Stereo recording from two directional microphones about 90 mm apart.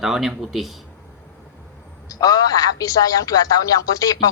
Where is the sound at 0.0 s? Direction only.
5° right (ahead or behind).